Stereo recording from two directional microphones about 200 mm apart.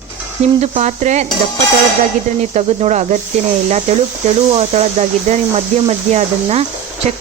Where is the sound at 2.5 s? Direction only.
35° right (ahead or behind).